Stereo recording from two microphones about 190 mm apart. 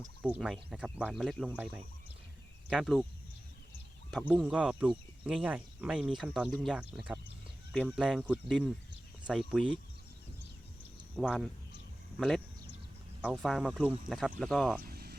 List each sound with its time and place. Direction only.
0.2 s speech: 5° right (ahead or behind)
4.3 s speech: 5° right (ahead or behind)
11.2 s speech: centre (ahead or behind)
14.8 s vehicle: 55° right (ahead or behind)